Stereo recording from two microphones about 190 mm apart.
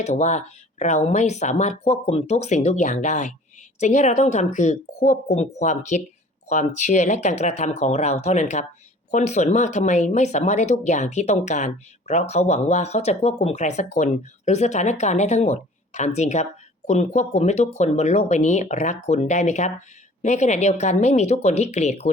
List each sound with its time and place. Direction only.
0.0 s speech: 40° left (ahead or behind)